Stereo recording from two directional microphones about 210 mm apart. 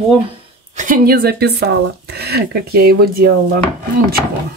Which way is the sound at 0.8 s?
40° right (ahead or behind).